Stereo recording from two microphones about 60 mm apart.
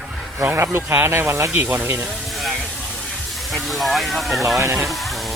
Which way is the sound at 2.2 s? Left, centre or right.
Centre.